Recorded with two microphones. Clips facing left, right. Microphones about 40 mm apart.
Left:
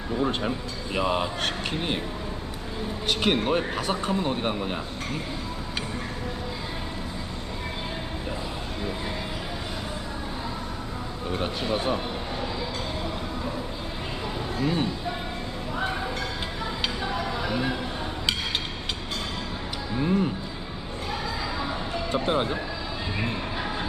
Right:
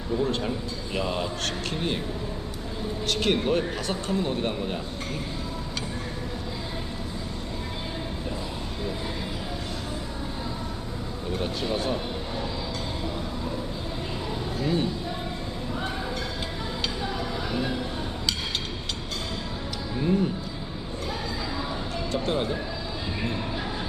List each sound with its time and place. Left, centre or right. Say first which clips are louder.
0.2 s speech: left 3 dB; left
3.1 s speech: left 1 dB; centre
11.3 s speech: left 1 dB; left
14.6 s speech: even; centre
17.5 s a sound: left 1 dB; centre
20.0 s speech: even; centre
22.1 s speech: left 2 dB; left